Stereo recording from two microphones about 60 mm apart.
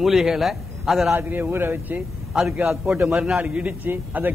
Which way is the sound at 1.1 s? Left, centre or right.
Right.